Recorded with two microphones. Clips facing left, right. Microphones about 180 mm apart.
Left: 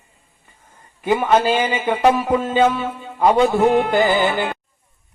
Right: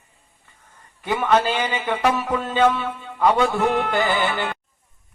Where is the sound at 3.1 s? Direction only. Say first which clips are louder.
Left 4 dB; 30° left (ahead or behind).